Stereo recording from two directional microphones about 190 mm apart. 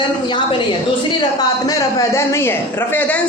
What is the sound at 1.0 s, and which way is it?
A man's voice, 20° left (ahead or behind).